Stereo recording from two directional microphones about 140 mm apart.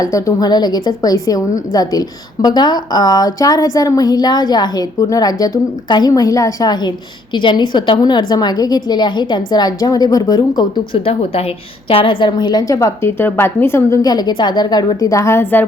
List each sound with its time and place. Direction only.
0.0 s a woman's voice: 25° left (ahead or behind)
11.0 s a woman's voice: 45° left (ahead or behind); by 15.6 s 15° left (ahead or behind)